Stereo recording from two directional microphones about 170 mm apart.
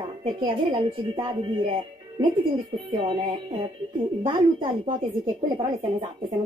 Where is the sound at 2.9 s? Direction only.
30° right (ahead or behind).